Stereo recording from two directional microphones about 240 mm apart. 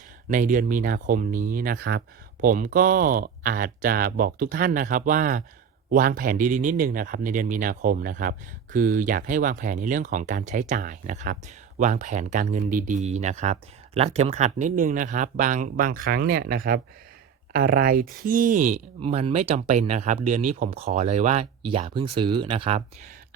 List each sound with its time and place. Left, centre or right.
0.3 s speech: right